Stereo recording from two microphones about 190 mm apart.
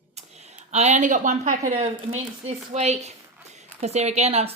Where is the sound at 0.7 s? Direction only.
35° right (ahead or behind).